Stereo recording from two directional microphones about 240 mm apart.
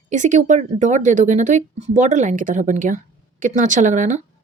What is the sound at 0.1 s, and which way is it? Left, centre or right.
A woman's voice, right.